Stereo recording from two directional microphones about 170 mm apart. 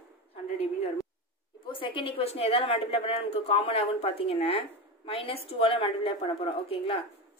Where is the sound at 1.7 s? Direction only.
30° left (ahead or behind).